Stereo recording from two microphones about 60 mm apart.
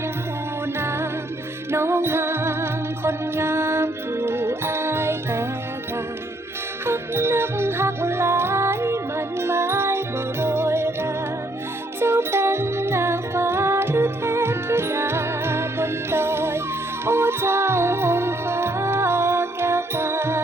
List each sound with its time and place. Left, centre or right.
0.8 s music: right
6.8 s music: right